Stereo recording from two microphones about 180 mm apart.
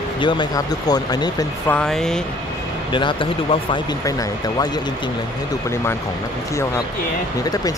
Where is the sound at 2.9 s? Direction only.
25° left (ahead or behind).